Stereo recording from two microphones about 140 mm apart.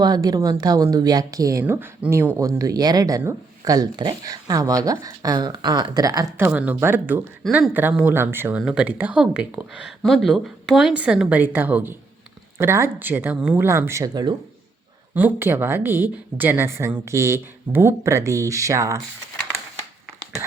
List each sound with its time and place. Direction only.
0.0 s speech: 30° right (ahead or behind)
1.6 s a woman's voice: 15° right (ahead or behind)
13.7 s speech: 20° right (ahead or behind)
15.1 s a woman's voice: 15° right (ahead or behind)